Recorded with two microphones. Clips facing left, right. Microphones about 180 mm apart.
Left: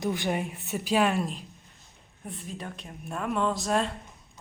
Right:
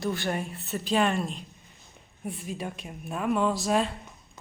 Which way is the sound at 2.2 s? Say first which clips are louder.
Right 4 dB; 10° right (ahead or behind).